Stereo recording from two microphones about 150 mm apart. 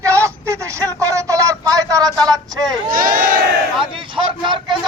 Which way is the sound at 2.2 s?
25° right (ahead or behind).